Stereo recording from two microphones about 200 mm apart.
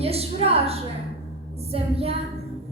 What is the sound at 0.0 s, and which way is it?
A woman's voice, 30° right (ahead or behind).